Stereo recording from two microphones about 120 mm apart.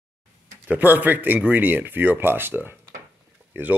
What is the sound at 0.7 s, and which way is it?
Speech, 15° right (ahead or behind).